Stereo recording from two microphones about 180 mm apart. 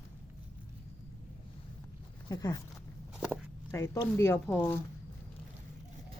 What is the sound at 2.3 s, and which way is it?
Speech, 20° left (ahead or behind).